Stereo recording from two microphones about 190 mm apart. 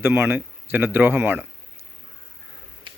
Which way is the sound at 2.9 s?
25° right (ahead or behind).